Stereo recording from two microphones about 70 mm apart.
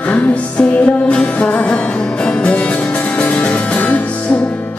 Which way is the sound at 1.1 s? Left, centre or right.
Centre.